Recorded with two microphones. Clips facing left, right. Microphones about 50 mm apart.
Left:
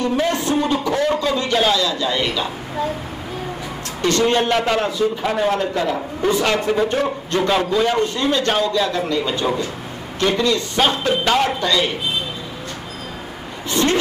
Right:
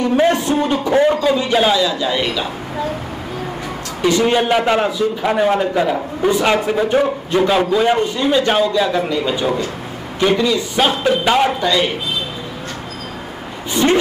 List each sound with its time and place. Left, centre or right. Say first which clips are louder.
0.1 s a man's voice: right 4 dB; right
4.0 s a man's voice: right 2 dB; centre
13.8 s vehicle: right 3 dB; centre